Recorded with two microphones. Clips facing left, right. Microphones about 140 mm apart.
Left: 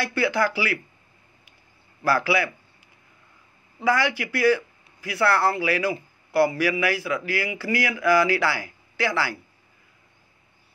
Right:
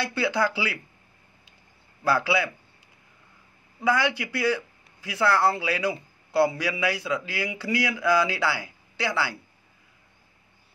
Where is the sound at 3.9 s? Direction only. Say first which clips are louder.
Left 1 dB; 20° right (ahead or behind).